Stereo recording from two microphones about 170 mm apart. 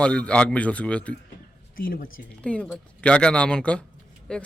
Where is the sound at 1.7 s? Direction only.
60° left (ahead or behind).